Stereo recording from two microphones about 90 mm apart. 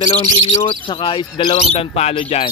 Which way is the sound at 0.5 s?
65° left (ahead or behind).